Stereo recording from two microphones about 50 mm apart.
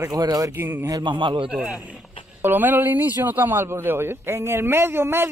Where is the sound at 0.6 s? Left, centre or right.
Right.